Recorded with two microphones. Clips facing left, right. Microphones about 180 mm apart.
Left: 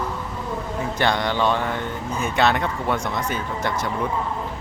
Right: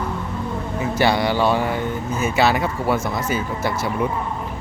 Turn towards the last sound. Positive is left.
turn(degrees=-5)  # may be behind; listen again after turning